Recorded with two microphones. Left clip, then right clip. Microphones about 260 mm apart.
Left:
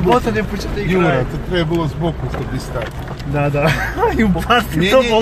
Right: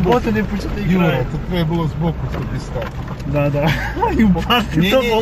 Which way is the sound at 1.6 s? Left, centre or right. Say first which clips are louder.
Left 4 dB; left.